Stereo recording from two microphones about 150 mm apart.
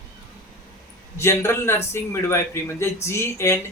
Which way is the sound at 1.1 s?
15° left (ahead or behind).